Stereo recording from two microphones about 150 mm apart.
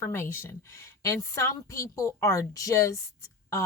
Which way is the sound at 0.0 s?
15° left (ahead or behind).